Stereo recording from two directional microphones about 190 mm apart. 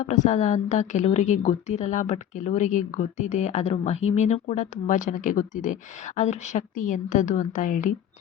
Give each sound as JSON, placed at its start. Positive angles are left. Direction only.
{"t": 0.0, "sound": "a woman's voice", "side_deg": 40}